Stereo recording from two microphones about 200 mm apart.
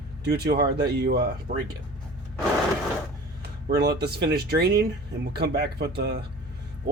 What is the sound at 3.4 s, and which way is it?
Speech, 50° right (ahead or behind).